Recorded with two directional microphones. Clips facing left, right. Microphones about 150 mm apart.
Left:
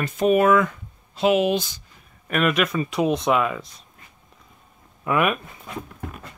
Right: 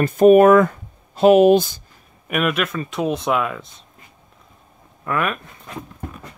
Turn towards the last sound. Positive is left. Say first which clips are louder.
# left 2 dB
turn(degrees=10)  # may be behind; listen again after turning